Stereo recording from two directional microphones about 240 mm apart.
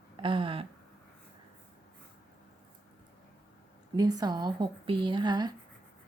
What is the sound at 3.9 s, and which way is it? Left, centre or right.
Speech, centre.